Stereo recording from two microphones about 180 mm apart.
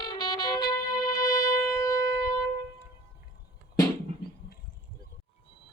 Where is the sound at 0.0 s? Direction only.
25° left (ahead or behind).